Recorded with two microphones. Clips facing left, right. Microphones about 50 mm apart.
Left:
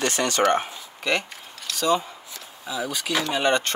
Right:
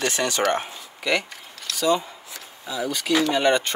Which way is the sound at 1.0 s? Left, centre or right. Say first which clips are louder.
Right 1 dB; centre.